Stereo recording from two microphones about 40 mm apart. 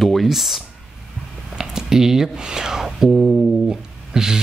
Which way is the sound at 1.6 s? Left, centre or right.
Centre.